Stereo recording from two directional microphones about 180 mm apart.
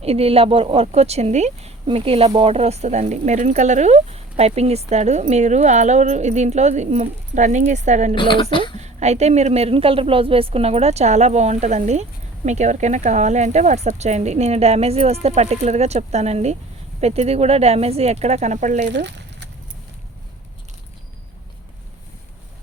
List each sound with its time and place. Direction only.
0.0 s speech: 35° right (ahead or behind)
8.1 s a woman's voice: 30° left (ahead or behind)
8.8 s speech: 40° right (ahead or behind)
18.9 s a sound: 75° right (ahead or behind)